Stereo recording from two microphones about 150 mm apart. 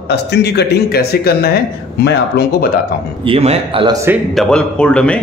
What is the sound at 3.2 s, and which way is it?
Speech, 40° right (ahead or behind).